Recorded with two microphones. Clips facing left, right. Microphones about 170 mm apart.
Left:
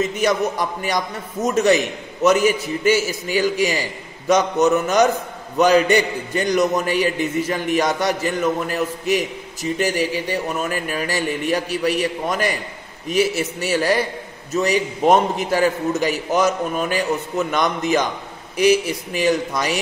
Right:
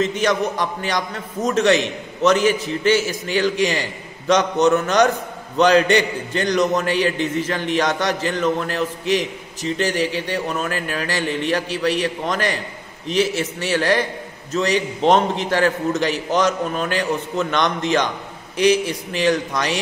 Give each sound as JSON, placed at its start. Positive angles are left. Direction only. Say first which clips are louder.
{"t": 0.0, "sound": "a man's voice", "louder": "even", "side_deg": 10}